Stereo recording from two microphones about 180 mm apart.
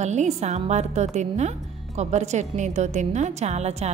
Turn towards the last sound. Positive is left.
turn(degrees=-35)  # may be behind; listen again after turning